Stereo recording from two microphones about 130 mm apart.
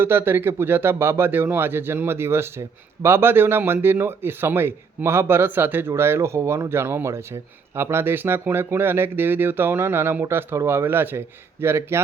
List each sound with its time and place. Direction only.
0.0 s speech: 15° right (ahead or behind)